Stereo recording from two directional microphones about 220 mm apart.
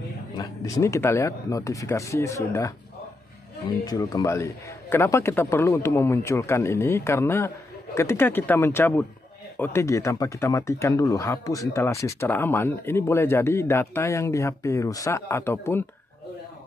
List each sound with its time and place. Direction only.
0.4 s speech: 15° left (ahead or behind)
3.8 s speech: 15° left (ahead or behind)